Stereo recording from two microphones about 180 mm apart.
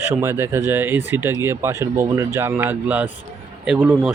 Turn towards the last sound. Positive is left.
turn(degrees=-10)  # may be behind; listen again after turning